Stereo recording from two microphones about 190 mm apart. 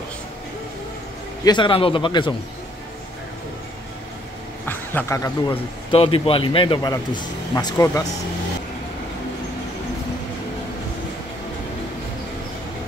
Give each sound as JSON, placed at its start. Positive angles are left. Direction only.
{"t": 1.4, "sound": "a man's voice", "side_deg": 25}
{"t": 4.6, "sound": "a man's voice", "side_deg": 10}
{"t": 5.5, "sound": "a man's voice", "side_deg": 30}